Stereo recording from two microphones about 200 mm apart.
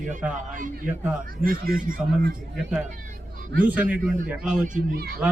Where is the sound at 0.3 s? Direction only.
40° right (ahead or behind).